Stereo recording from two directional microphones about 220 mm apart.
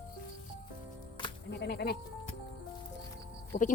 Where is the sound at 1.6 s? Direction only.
50° left (ahead or behind).